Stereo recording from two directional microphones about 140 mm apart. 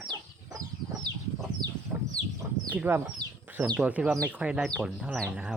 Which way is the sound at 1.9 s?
Centre (ahead or behind).